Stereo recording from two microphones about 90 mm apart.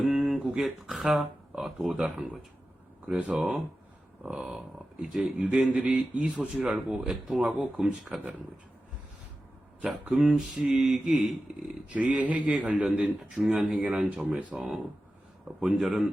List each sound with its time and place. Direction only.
0.0 s speech: 10° right (ahead or behind)
9.8 s speech: 10° right (ahead or behind)
11.9 s speech: 15° right (ahead or behind)
15.6 s speech: 5° right (ahead or behind)